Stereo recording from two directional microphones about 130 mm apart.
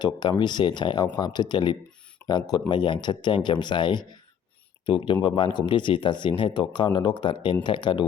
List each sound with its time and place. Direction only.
0.0 s speech: 35° left (ahead or behind)